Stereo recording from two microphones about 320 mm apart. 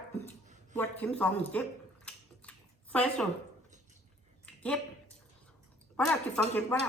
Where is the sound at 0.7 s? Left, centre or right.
Centre.